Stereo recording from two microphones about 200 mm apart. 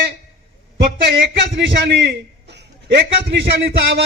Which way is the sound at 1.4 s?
55° right (ahead or behind).